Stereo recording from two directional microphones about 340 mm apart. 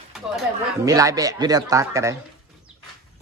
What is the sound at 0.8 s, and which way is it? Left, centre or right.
A woman's voice, centre.